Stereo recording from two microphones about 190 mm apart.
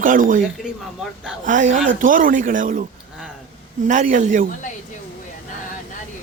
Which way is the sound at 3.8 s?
40° right (ahead or behind).